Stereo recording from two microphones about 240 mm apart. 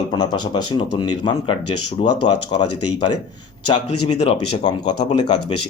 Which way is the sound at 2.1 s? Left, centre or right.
Left.